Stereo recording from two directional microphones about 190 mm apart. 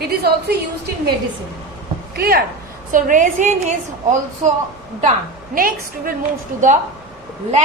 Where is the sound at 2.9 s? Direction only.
40° right (ahead or behind).